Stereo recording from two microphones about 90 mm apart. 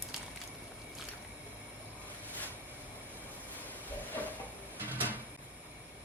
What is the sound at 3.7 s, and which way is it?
Train, 20° left (ahead or behind).